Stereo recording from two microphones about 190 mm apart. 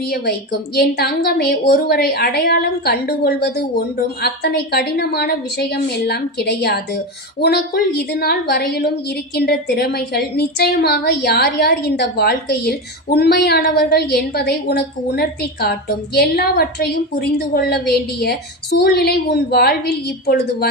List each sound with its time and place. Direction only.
0.8 s a woman's voice: 55° left (ahead or behind)